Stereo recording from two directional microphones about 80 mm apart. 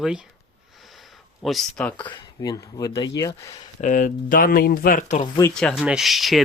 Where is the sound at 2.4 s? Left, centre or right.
Left.